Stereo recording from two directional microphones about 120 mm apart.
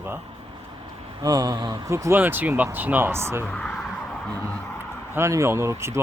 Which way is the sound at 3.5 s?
10° left (ahead or behind).